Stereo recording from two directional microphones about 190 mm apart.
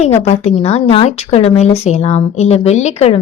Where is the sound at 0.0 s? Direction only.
35° left (ahead or behind).